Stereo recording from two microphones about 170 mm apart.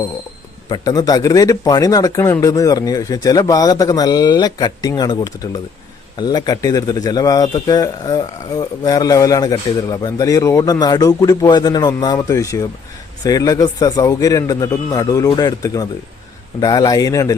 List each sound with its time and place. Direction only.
0.7 s a man's voice: 25° left (ahead or behind)